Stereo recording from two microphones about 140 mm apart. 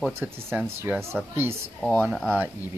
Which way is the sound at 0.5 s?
15° right (ahead or behind).